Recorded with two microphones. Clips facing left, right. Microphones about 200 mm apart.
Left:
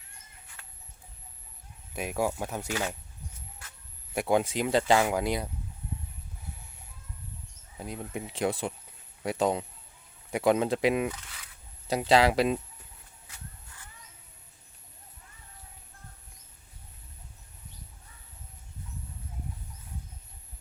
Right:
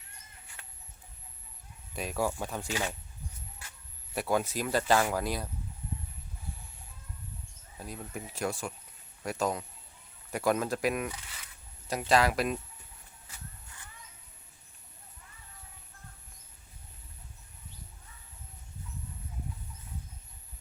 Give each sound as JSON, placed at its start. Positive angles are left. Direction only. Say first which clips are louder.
{"t": 2.0, "sound": "speech", "louder": "left 2 dB", "side_deg": 10}
{"t": 4.1, "sound": "speech", "louder": "left 4 dB", "side_deg": 15}
{"t": 7.8, "sound": "speech", "louder": "left 4 dB", "side_deg": 20}